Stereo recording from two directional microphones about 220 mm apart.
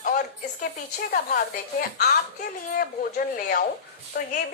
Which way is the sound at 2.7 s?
40° left (ahead or behind).